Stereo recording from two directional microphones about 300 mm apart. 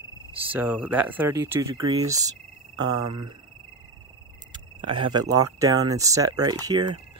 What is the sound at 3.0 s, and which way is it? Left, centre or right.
Speech, right.